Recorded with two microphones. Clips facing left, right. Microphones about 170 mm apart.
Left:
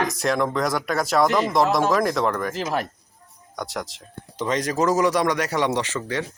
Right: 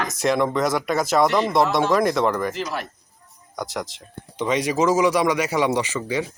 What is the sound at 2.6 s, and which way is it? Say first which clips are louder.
Speech: left 3 dB; 45° left (ahead or behind).